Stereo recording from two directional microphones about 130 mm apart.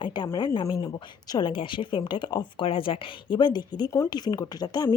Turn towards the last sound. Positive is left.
turn(degrees=30)  # may be behind; listen again after turning